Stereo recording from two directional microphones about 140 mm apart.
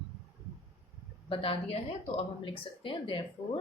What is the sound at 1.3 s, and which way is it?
Speech, 40° left (ahead or behind).